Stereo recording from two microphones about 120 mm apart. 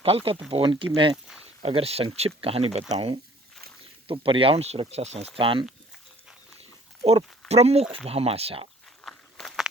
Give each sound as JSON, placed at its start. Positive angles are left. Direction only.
{"t": 0.0, "sound": "speech", "side_deg": -50}
{"t": 1.6, "sound": "speech", "side_deg": -55}
{"t": 7.0, "sound": "speech", "side_deg": -60}
{"t": 9.0, "sound": "walk", "side_deg": 0}